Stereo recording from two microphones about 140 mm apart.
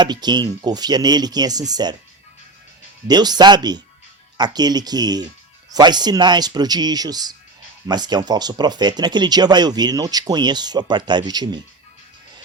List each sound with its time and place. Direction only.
0.0 s speech: 30° right (ahead or behind)
3.1 s speech: 30° right (ahead or behind)